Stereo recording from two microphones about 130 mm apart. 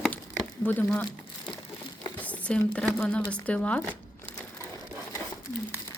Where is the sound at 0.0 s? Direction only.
5° left (ahead or behind).